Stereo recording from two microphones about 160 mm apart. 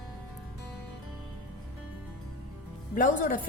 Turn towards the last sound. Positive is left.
turn(degrees=55)  # may be behind; listen again after turning